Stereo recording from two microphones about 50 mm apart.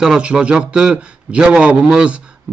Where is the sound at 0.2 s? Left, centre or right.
Centre.